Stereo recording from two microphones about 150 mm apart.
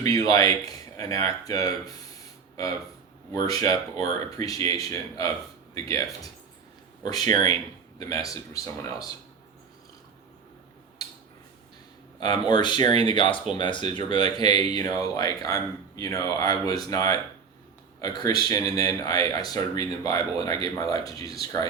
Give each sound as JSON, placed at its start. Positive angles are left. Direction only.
{"t": 0.0, "sound": "speech", "side_deg": 25}
{"t": 3.3, "sound": "speech", "side_deg": 25}
{"t": 12.2, "sound": "speech", "side_deg": 30}